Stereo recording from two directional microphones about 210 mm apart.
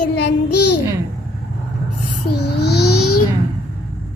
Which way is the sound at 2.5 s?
50° left (ahead or behind).